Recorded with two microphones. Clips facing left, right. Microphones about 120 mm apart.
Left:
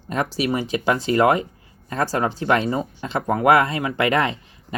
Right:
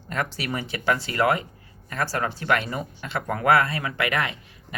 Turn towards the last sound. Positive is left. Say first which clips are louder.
# left 6 dB
turn(degrees=25)  # may be behind; listen again after turning